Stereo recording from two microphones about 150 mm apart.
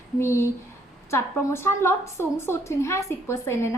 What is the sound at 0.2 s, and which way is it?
A woman's voice, 15° left (ahead or behind).